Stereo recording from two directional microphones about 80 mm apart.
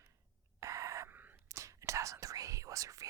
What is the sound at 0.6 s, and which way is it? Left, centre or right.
Owl, right.